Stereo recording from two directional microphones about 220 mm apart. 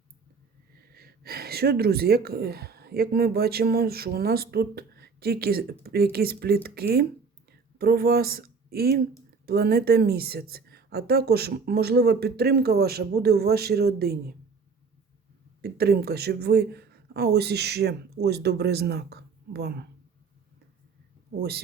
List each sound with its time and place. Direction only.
0.9 s a woman's voice: 45° right (ahead or behind)
15.6 s a woman's voice: 45° right (ahead or behind)